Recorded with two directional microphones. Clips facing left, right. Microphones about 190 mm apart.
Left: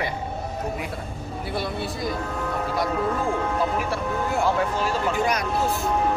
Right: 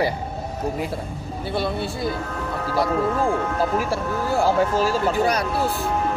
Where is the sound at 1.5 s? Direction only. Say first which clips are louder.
Right 4 dB; 30° right (ahead or behind).